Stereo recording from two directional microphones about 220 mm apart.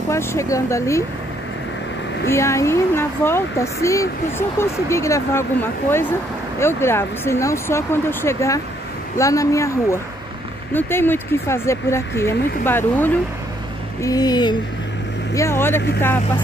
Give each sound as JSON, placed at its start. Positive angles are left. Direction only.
{"t": 0.1, "sound": "speech", "side_deg": 10}
{"t": 2.2, "sound": "speech", "side_deg": 10}